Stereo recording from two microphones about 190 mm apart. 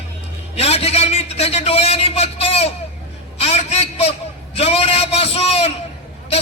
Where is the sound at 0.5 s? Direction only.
30° left (ahead or behind).